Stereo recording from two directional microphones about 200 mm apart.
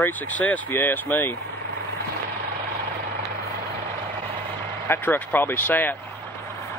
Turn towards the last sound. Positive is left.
turn(degrees=10)  # may be behind; listen again after turning